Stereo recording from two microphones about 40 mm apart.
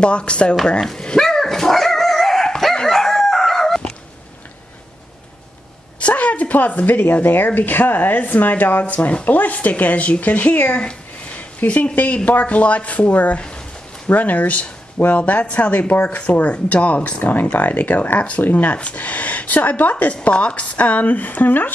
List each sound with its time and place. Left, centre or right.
0.0 s speech: left
1.0 s dog: centre
5.9 s a woman's voice: left
10.8 s a sound: left
12.3 s speech: left
14.0 s a woman's voice: left